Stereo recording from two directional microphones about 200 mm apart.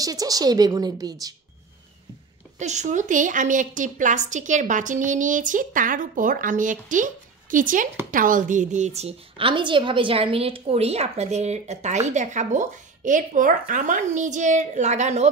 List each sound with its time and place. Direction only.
0.0 s a woman's voice: 20° right (ahead or behind)
2.6 s a woman's voice: 35° right (ahead or behind)